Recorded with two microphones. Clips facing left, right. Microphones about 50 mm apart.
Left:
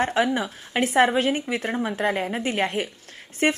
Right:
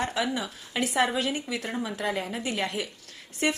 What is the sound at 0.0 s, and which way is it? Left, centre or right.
A woman's voice, left.